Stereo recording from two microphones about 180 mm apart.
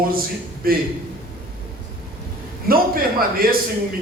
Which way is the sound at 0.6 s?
55° right (ahead or behind).